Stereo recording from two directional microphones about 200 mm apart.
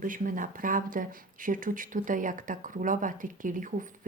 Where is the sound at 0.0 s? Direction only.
40° right (ahead or behind).